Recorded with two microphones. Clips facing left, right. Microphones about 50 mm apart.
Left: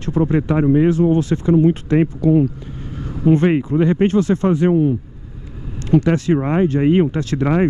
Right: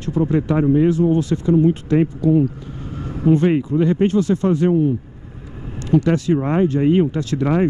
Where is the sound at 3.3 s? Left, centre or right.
Left.